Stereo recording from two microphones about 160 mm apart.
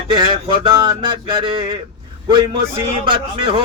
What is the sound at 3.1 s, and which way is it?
Speech, 35° right (ahead or behind).